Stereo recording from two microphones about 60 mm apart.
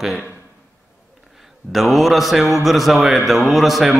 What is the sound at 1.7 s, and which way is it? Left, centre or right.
A man's voice, centre.